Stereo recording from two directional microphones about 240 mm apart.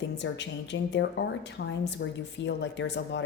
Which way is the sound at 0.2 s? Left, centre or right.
Left.